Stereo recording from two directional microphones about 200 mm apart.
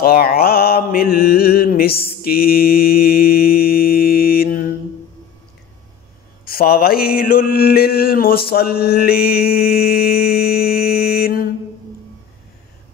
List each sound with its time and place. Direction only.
0.0 s mantra: 50° left (ahead or behind)
6.4 s mantra: 50° left (ahead or behind)